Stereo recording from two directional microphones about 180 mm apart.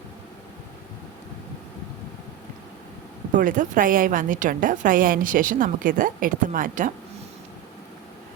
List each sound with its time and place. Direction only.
3.3 s a woman's voice: 50° right (ahead or behind)